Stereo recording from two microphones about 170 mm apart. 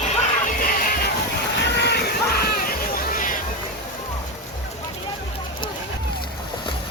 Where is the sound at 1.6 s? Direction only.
85° left; by 2.7 s 70° left (ahead or behind).